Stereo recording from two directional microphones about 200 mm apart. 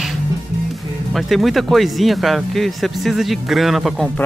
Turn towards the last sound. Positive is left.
turn(degrees=0)  # may be behind; listen again after turning